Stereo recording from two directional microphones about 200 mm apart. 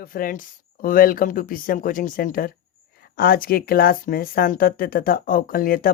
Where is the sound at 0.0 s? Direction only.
45° left (ahead or behind).